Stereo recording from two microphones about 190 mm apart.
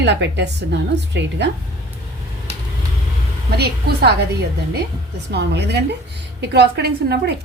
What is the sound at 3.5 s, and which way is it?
Speech, 60° right (ahead or behind).